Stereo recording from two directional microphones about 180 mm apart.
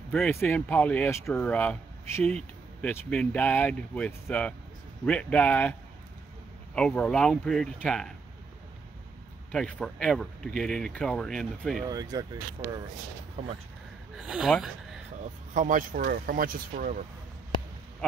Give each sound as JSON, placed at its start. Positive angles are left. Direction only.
{"t": 0.1, "sound": "speech", "side_deg": 5}
{"t": 9.5, "sound": "speech", "side_deg": 5}
{"t": 11.8, "sound": "speech", "side_deg": -20}
{"t": 14.1, "sound": "speech", "side_deg": -5}
{"t": 15.5, "sound": "speech", "side_deg": -45}